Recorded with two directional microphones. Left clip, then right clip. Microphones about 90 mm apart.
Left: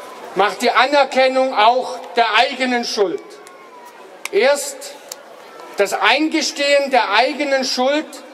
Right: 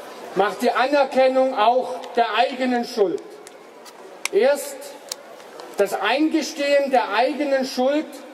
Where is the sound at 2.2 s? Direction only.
10° right (ahead or behind).